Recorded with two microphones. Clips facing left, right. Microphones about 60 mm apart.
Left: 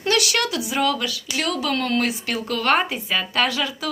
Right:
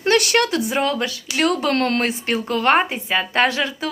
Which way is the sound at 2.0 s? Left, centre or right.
Right.